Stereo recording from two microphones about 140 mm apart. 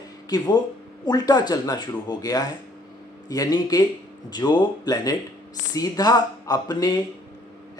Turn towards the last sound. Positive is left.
turn(degrees=30)  # may be behind; listen again after turning